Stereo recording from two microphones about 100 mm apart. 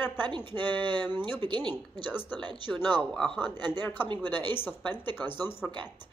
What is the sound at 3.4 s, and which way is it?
Speech, 45° right (ahead or behind).